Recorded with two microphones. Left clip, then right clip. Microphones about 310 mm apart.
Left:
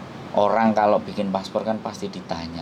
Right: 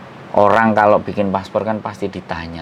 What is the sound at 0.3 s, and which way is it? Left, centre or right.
Speech, right.